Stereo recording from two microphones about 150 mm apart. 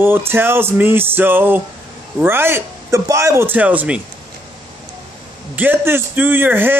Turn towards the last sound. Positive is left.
turn(degrees=-15)  # may be behind; listen again after turning